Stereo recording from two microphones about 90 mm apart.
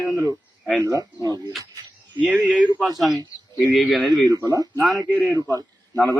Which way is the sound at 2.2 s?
Centre (ahead or behind).